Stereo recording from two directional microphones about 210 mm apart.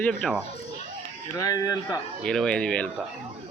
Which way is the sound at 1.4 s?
15° left (ahead or behind).